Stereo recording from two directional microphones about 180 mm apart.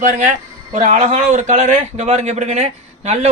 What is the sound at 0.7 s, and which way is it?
A man's voice, 45° right (ahead or behind).